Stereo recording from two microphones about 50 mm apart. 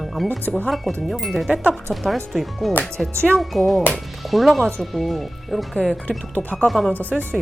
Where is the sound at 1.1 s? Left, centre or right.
Centre.